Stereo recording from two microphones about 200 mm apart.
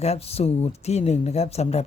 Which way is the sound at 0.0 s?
30° left (ahead or behind).